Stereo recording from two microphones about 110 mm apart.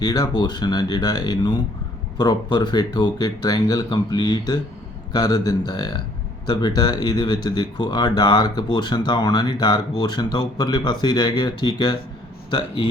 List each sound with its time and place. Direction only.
0.0 s a man's voice: 35° left (ahead or behind)